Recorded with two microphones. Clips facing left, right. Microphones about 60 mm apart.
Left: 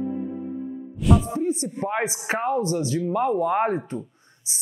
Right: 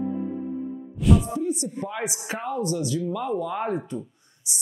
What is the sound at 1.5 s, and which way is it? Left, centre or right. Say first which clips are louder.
Speech: left 2 dB; left.